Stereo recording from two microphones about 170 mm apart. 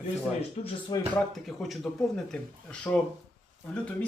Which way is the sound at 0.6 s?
30° left (ahead or behind).